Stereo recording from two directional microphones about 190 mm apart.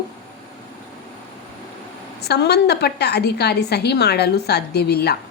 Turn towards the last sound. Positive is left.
turn(degrees=55)  # may be behind; listen again after turning